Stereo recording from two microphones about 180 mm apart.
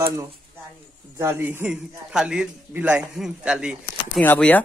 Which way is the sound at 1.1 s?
15° right (ahead or behind).